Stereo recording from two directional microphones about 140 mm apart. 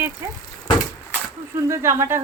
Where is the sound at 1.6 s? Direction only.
20° right (ahead or behind).